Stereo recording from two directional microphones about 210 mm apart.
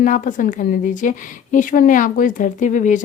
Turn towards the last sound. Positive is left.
turn(degrees=35)  # may be behind; listen again after turning